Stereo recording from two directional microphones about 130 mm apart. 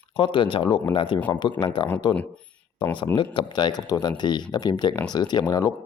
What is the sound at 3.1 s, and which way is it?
Speech, 40° left (ahead or behind).